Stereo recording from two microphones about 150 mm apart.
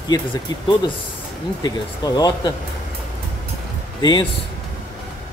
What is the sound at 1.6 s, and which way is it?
Speech, 25° left (ahead or behind).